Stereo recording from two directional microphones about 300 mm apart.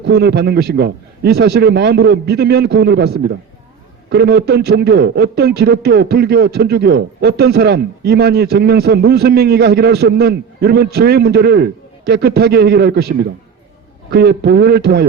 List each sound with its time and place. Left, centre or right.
0.0 s a man's voice: right